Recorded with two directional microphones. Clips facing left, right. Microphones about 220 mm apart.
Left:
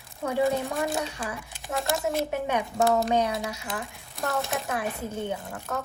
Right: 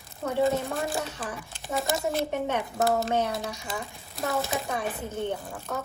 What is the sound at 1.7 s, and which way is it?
A woman's voice, centre (ahead or behind).